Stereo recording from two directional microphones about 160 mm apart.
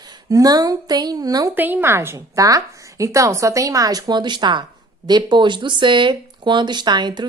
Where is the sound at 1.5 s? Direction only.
10° right (ahead or behind).